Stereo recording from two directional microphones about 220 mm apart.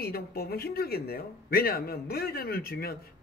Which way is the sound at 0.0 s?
45° left (ahead or behind).